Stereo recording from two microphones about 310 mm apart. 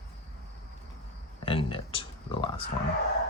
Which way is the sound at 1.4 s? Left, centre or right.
Centre.